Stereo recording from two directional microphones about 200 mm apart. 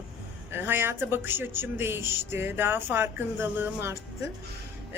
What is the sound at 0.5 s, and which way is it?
Speech, 10° right (ahead or behind).